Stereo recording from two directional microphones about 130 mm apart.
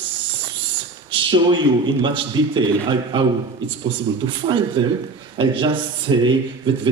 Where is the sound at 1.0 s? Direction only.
40° right (ahead or behind).